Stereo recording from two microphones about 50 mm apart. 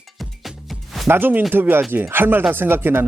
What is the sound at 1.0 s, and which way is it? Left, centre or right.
Speech, right.